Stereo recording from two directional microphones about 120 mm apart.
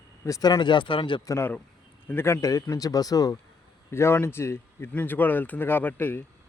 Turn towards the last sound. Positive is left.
turn(degrees=15)  # may be behind; listen again after turning